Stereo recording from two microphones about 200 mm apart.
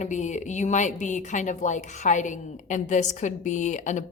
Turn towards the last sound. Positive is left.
turn(degrees=35)  # may be behind; listen again after turning